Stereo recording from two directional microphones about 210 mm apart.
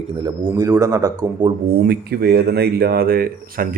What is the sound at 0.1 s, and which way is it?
Speech, 25° right (ahead or behind).